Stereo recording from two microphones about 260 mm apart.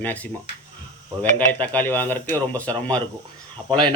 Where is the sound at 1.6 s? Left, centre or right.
Centre.